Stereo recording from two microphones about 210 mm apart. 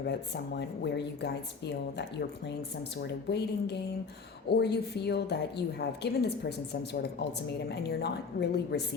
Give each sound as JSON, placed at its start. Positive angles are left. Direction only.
{"t": 0.8, "sound": "a woman's voice", "side_deg": 55}
{"t": 7.7, "sound": "a woman's voice", "side_deg": 50}